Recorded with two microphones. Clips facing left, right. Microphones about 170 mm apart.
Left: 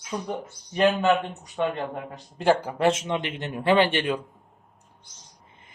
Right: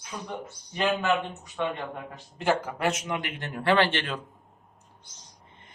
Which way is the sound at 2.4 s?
35° left (ahead or behind).